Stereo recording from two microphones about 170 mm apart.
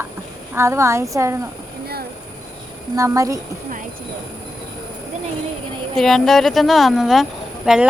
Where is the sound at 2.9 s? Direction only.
20° right (ahead or behind).